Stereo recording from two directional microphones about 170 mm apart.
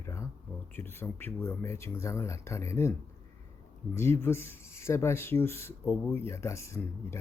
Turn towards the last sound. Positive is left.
turn(degrees=15)  # may be behind; listen again after turning